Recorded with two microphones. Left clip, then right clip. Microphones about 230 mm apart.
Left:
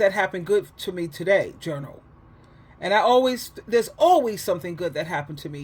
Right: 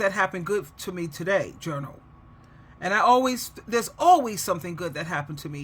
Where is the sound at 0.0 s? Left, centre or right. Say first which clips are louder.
Left 3 dB; centre.